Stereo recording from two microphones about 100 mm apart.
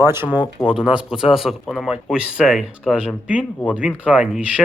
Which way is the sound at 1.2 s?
5° right (ahead or behind).